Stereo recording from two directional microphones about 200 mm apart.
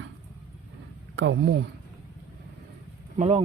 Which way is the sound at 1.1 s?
65° right (ahead or behind).